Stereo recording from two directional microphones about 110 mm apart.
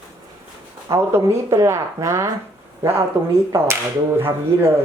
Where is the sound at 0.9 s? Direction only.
25° right (ahead or behind).